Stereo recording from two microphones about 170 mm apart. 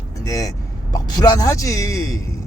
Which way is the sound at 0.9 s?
20° left (ahead or behind).